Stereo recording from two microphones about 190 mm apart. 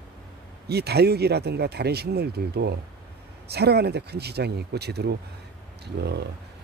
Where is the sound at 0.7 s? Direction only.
55° right (ahead or behind).